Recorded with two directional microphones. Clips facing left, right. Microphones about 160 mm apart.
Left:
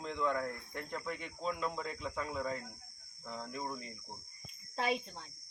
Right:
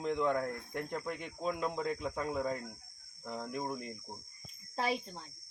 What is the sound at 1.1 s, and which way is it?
Speech, 50° right (ahead or behind).